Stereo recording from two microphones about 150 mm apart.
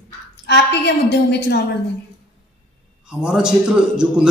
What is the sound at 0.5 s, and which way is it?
A woman's voice, 90° left.